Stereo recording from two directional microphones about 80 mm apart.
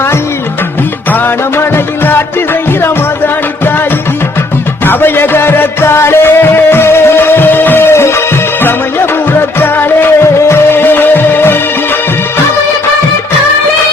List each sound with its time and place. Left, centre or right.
4.9 s music: left
9.6 s music: left